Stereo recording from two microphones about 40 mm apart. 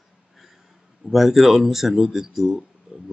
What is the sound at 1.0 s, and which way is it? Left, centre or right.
Speech, centre.